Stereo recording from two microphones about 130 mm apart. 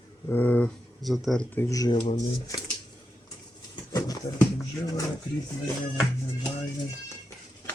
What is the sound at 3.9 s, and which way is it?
Speech, 25° left (ahead or behind).